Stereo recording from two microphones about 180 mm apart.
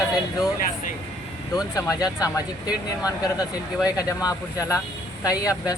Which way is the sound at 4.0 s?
20° left (ahead or behind).